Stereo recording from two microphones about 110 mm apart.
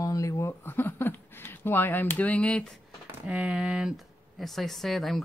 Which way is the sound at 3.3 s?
10° right (ahead or behind).